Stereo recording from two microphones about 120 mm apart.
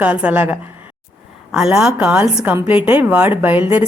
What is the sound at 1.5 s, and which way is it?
A woman's voice, 5° right (ahead or behind).